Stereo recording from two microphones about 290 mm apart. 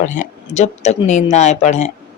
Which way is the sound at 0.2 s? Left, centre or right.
Left.